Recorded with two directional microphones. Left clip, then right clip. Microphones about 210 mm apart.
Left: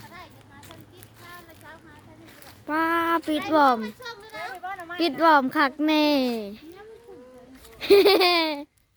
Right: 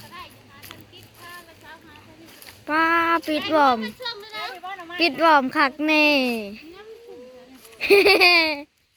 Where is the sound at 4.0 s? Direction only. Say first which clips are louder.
Right 5 dB; 45° left (ahead or behind).